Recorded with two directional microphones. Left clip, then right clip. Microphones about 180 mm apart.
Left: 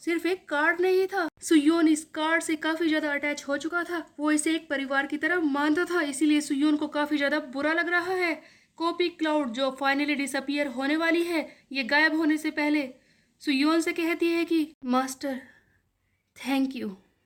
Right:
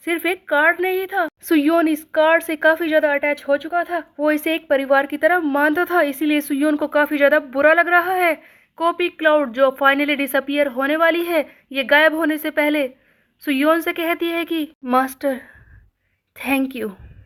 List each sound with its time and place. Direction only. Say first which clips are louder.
0.0 s speech: right 6 dB; 25° right (ahead or behind)
4.5 s a woman's voice: right 11 dB; 25° right (ahead or behind)